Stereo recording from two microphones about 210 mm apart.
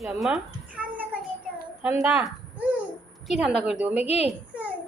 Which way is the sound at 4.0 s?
30° left (ahead or behind).